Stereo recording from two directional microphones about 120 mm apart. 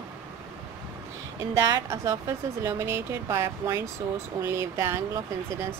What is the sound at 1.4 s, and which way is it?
A woman's voice, 25° right (ahead or behind).